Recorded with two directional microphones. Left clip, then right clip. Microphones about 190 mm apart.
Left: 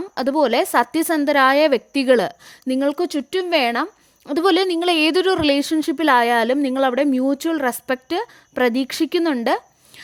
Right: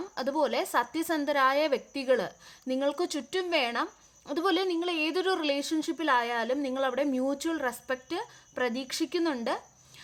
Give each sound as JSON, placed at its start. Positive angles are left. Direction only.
{"t": 0.1, "sound": "a woman's voice", "side_deg": 45}